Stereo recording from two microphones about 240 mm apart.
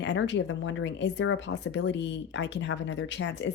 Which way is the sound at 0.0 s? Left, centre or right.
Left.